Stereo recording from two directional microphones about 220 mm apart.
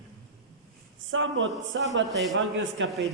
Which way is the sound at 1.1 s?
60° right (ahead or behind).